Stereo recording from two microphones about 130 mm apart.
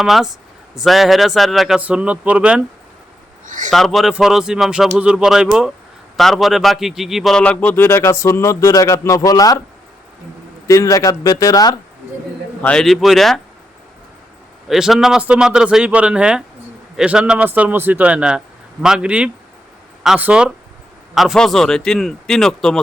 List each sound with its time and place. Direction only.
0.0 s speech: centre (ahead or behind)
3.4 s a man's voice: 80° right
3.7 s a man's voice: centre (ahead or behind); by 9.6 s 25° left (ahead or behind)
10.7 s speech: 25° left (ahead or behind)
12.6 s speech: 5° left (ahead or behind)
14.7 s a man's voice: 5° right (ahead or behind)